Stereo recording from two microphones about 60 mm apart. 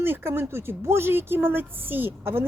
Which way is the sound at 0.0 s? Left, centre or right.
Right.